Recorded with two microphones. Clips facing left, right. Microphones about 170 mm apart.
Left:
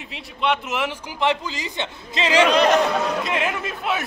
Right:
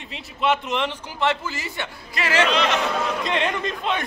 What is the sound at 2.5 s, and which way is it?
Speech, 40° left (ahead or behind).